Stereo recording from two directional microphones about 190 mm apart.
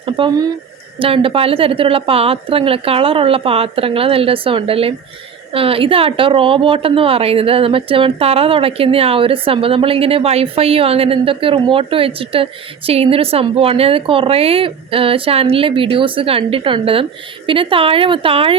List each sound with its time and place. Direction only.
0.0 s a woman's voice: 25° right (ahead or behind)